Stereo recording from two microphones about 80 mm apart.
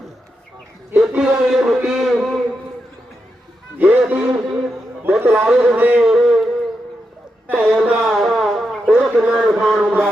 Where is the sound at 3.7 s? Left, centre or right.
Right.